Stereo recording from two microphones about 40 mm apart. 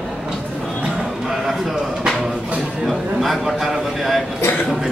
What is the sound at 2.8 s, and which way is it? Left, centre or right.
A man's voice, centre.